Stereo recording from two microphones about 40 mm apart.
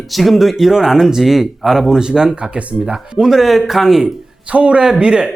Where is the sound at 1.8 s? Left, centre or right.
Centre.